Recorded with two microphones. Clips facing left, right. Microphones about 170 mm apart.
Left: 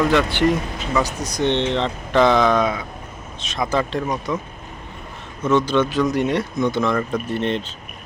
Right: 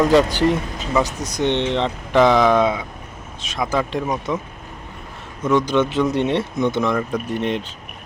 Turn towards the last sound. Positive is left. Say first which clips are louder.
# even
turn(degrees=-15)  # may be behind; listen again after turning